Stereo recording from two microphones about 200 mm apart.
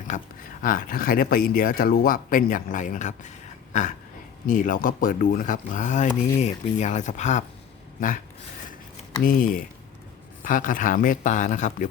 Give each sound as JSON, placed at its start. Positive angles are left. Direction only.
{"t": 0.6, "sound": "speech", "side_deg": 45}
{"t": 9.2, "sound": "speech", "side_deg": 45}